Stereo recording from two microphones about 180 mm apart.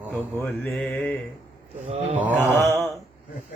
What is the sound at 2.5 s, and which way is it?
Mantra, 15° left (ahead or behind).